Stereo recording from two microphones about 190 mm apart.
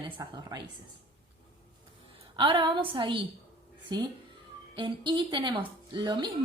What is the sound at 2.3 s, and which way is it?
Speech, 25° right (ahead or behind).